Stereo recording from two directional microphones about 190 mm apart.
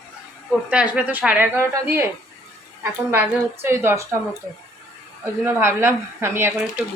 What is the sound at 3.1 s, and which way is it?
Speech, 10° right (ahead or behind).